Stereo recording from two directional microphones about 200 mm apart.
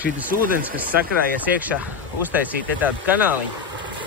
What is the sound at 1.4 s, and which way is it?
Speech, 10° right (ahead or behind).